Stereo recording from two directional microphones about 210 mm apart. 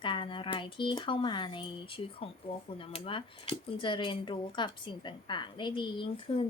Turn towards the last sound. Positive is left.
turn(degrees=25)  # may be behind; listen again after turning